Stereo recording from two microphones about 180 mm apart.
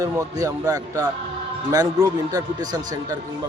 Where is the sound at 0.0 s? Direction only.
20° right (ahead or behind).